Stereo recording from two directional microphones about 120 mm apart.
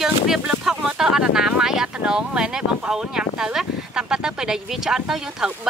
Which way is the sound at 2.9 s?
5° right (ahead or behind).